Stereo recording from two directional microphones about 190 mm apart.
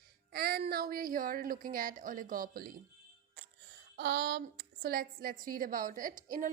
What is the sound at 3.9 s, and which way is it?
A woman's voice, 60° right (ahead or behind).